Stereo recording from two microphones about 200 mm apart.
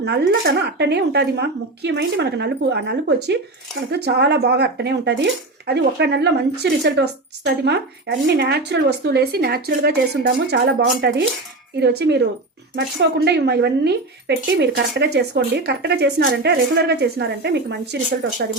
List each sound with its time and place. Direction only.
0.0 s speech: 55° right (ahead or behind)